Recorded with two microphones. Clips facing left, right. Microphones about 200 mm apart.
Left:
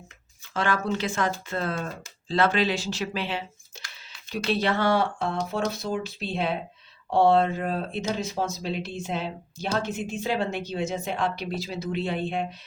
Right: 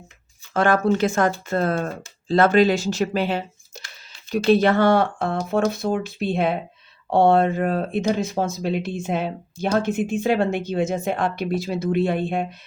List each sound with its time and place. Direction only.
0.5 s speech: 50° right (ahead or behind)